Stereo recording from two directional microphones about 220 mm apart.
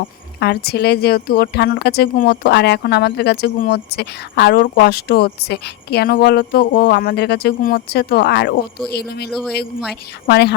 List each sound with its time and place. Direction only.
0.3 s speech: 45° left (ahead or behind)
9.3 s speech: centre (ahead or behind)
9.9 s speech: 50° left (ahead or behind)